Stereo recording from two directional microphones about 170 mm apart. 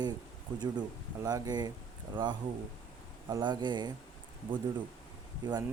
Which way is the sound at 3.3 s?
25° right (ahead or behind).